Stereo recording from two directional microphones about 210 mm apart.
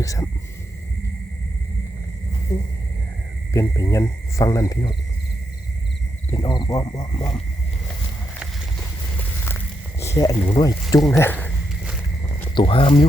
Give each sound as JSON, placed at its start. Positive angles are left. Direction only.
{"t": 0.0, "sound": "speech", "side_deg": 15}
{"t": 2.5, "sound": "speech", "side_deg": 10}
{"t": 6.3, "sound": "speech", "side_deg": 20}
{"t": 9.1, "sound": "a sound", "side_deg": 10}
{"t": 10.3, "sound": "speech", "side_deg": 25}
{"t": 12.5, "sound": "speech", "side_deg": 25}